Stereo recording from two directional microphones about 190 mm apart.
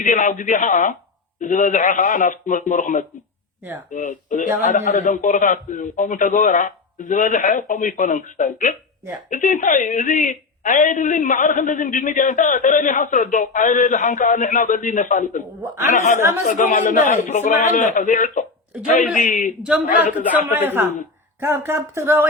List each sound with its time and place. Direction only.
0.0 s a woman's voice: 40° left (ahead or behind)
19.6 s speech: 5° right (ahead or behind)